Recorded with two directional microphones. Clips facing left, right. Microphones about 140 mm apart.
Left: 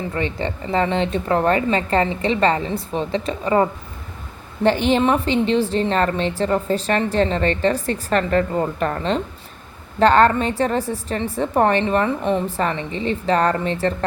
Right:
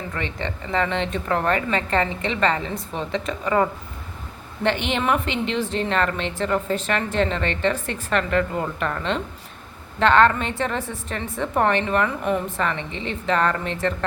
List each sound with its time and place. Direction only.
0.1 s a woman's voice: 35° left (ahead or behind)